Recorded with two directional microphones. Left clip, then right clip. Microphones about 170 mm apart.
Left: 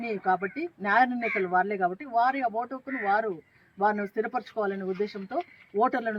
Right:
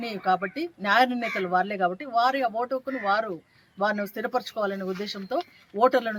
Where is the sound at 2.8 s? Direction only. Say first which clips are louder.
Right 2 dB; 30° right (ahead or behind).